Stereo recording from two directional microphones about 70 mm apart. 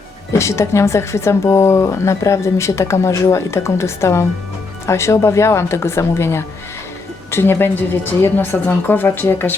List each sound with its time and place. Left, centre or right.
0.3 s a woman's voice: left